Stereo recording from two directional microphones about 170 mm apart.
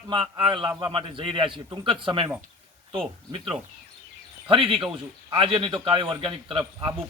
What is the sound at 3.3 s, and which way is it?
A man's voice, 30° right (ahead or behind).